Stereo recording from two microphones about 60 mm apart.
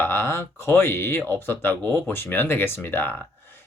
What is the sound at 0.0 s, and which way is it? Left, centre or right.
Speech, left.